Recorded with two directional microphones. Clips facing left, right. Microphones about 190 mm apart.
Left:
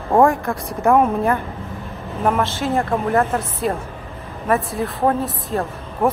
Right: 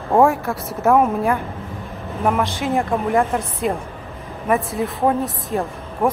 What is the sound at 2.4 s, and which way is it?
Speech, 15° right (ahead or behind).